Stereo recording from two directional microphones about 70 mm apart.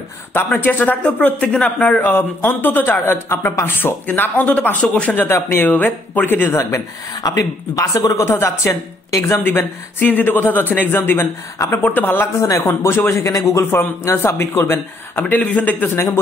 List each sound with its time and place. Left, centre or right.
0.5 s speech: left
2.0 s speech: left
5.1 s speech: left
6.5 s speech: left
9.4 s speech: left
11.8 s speech: left
12.4 s speech: left
13.7 s speech: left